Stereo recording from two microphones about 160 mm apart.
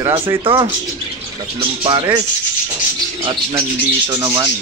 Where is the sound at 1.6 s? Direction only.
35° right (ahead or behind).